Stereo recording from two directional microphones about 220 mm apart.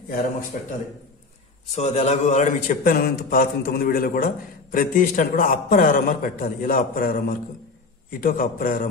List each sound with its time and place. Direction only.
0.5 s a man's voice: 35° left (ahead or behind)